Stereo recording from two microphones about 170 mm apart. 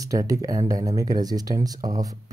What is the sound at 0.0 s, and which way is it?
Speech, 20° right (ahead or behind).